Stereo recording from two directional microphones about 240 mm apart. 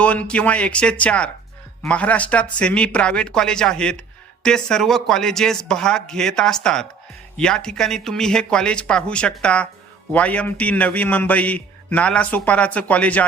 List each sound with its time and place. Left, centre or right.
0.0 s a man's voice: centre